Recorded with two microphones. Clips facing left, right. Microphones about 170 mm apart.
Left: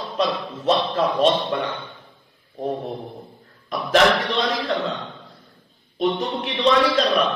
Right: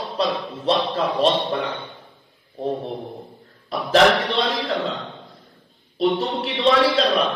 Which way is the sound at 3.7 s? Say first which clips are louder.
Right 1 dB; 30° right (ahead or behind).